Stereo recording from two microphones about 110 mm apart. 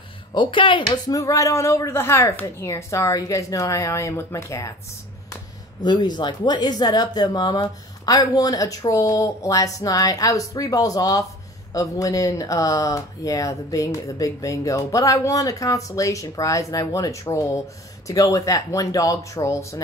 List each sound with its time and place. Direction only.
0.3 s speech: 50° left (ahead or behind); by 4.7 s 25° left (ahead or behind)
5.9 s speech: 40° left (ahead or behind)